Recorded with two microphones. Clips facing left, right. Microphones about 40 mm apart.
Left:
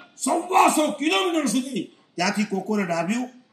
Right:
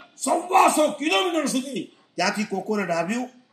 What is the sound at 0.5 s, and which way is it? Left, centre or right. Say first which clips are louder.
Speech: right 1 dB; left.